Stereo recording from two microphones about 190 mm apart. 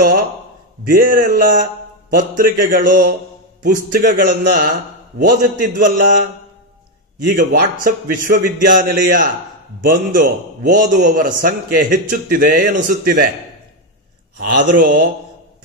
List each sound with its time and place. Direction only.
0.8 s a man's voice: 45° right (ahead or behind)
7.2 s a man's voice: 50° right (ahead or behind)
14.4 s a man's voice: 50° right (ahead or behind)